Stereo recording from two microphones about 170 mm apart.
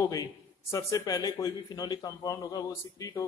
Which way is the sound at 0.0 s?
20° left (ahead or behind).